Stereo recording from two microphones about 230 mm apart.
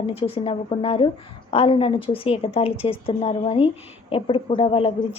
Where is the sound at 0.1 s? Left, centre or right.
Left.